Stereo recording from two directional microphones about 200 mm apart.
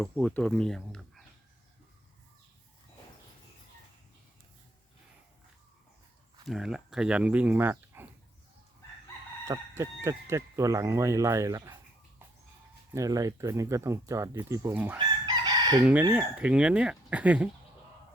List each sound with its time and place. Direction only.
0.0 s speech: 5° left (ahead or behind)
6.4 s speech: centre (ahead or behind)
9.5 s speech: 15° right (ahead or behind)
12.9 s speech: 15° right (ahead or behind)
15.4 s chicken: 20° right (ahead or behind)
15.8 s speech: 10° right (ahead or behind)